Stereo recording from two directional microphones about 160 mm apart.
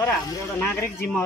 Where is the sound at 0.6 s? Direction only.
10° left (ahead or behind).